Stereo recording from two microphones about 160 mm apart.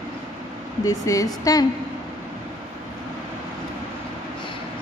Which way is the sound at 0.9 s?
20° left (ahead or behind).